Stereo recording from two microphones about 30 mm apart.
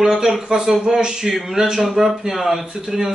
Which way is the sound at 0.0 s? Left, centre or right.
Centre.